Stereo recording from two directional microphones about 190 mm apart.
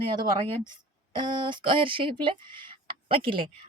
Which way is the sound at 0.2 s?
20° right (ahead or behind).